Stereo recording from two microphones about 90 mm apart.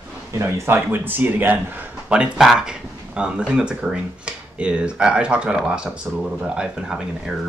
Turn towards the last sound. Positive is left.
turn(degrees=-5)  # may be behind; listen again after turning